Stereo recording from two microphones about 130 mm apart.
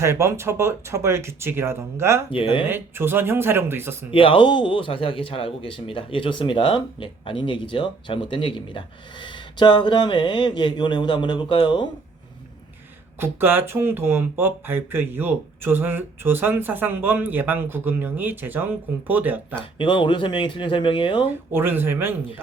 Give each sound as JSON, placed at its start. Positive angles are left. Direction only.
{"t": 0.0, "sound": "speech", "side_deg": -20}
{"t": 2.3, "sound": "speech", "side_deg": 40}
{"t": 2.6, "sound": "speech", "side_deg": -15}
{"t": 4.1, "sound": "speech", "side_deg": 40}
{"t": 13.1, "sound": "speech", "side_deg": -15}
{"t": 19.5, "sound": "speech", "side_deg": 40}
{"t": 21.5, "sound": "speech", "side_deg": -15}